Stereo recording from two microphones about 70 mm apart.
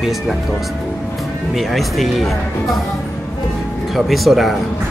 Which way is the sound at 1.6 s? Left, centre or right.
Centre.